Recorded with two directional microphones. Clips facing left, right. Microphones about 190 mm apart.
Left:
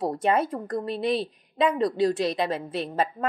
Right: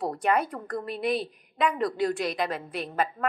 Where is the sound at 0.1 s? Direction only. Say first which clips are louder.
Left 2 dB; 25° left (ahead or behind).